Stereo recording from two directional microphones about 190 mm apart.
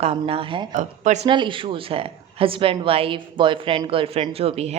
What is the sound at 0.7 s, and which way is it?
Speech, 40° right (ahead or behind).